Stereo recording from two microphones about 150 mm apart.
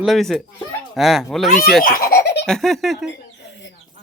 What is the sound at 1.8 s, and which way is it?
Speech, 75° left (ahead or behind).